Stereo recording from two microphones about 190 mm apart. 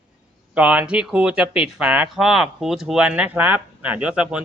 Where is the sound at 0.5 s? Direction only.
5° right (ahead or behind).